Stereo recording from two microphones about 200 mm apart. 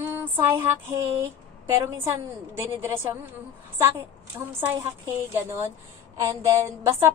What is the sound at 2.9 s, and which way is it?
Speech, 15° right (ahead or behind).